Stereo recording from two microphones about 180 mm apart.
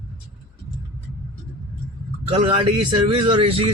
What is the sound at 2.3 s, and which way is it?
A man's voice, 30° right (ahead or behind).